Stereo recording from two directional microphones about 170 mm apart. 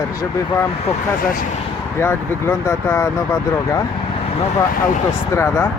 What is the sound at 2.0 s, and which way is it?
Speech, 15° left (ahead or behind).